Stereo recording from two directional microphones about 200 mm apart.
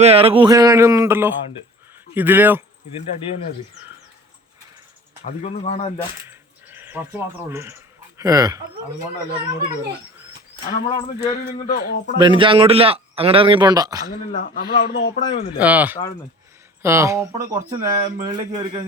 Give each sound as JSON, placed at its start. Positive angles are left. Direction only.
{"t": 0.0, "sound": "speech", "side_deg": -30}
{"t": 5.2, "sound": "speech", "side_deg": 35}
{"t": 6.2, "sound": "a sound", "side_deg": -10}
{"t": 8.2, "sound": "speech", "side_deg": -15}
{"t": 10.6, "sound": "speech", "side_deg": 25}
{"t": 11.6, "sound": "speech", "side_deg": 45}
{"t": 12.2, "sound": "a man's voice", "side_deg": -25}
{"t": 14.3, "sound": "speech", "side_deg": 50}
{"t": 15.1, "sound": "speech", "side_deg": 35}
{"t": 15.5, "sound": "speech", "side_deg": -5}
{"t": 17.7, "sound": "speech", "side_deg": -35}